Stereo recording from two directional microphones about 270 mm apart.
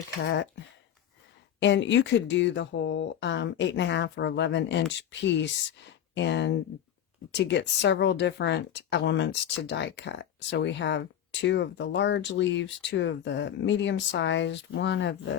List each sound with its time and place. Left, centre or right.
1.6 s speech: left